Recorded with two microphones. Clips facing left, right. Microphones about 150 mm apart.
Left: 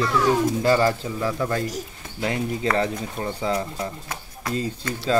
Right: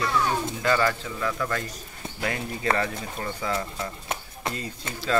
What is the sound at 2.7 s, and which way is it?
Speech, 25° left (ahead or behind).